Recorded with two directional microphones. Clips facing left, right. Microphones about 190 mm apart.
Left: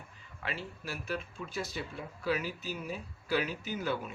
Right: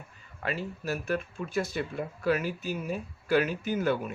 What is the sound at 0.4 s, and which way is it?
Speech, 45° right (ahead or behind).